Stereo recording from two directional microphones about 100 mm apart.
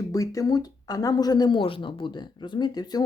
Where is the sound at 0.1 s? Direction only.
35° left (ahead or behind).